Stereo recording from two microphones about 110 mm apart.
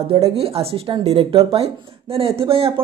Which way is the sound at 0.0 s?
60° right (ahead or behind).